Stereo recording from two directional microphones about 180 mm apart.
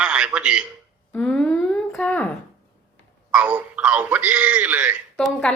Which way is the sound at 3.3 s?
5° right (ahead or behind).